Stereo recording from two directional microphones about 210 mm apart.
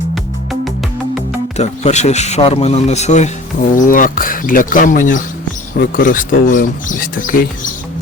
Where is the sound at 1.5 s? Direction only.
30° left (ahead or behind).